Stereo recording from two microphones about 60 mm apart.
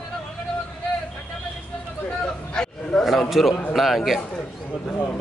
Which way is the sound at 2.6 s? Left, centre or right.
Centre.